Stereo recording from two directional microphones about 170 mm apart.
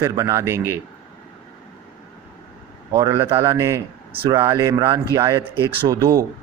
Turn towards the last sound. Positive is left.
turn(degrees=-15)  # may be behind; listen again after turning